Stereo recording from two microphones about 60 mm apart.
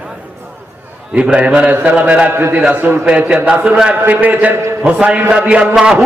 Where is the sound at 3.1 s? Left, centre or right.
Centre.